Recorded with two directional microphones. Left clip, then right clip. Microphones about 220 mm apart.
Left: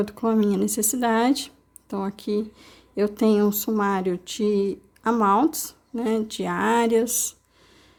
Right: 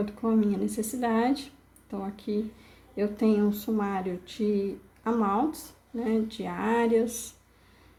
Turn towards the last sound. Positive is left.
turn(degrees=40)  # may be behind; listen again after turning